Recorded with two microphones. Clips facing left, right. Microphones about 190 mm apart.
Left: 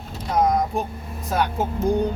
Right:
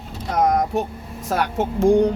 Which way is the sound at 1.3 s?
80° right.